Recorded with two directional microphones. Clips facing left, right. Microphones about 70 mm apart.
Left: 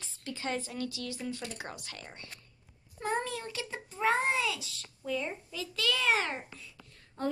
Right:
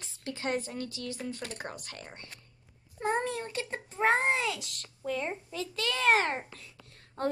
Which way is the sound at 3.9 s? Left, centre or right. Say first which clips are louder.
Right 2 dB; right.